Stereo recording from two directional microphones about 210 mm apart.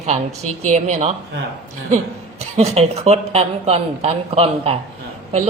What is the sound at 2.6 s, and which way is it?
Speech, 30° right (ahead or behind).